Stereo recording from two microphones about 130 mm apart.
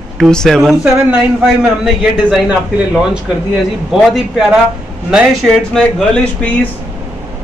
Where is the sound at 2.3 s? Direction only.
10° right (ahead or behind); by 6.5 s 10° left (ahead or behind).